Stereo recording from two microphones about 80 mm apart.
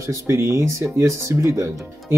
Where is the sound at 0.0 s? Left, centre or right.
Right.